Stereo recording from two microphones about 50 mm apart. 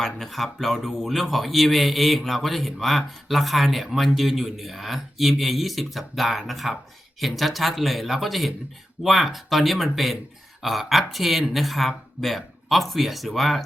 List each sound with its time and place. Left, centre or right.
0.0 s speech: centre